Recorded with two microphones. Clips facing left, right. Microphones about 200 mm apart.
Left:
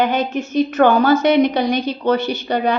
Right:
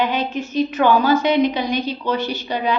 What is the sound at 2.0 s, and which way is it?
Speech, 55° left (ahead or behind).